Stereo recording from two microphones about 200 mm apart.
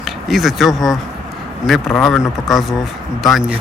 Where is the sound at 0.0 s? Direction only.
Centre (ahead or behind).